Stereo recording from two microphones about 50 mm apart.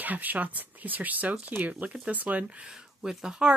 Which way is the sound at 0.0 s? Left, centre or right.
Right.